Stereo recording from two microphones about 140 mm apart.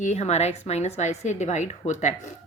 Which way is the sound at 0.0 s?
55° left (ahead or behind).